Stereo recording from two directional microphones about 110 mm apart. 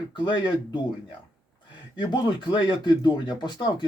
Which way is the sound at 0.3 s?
45° left (ahead or behind).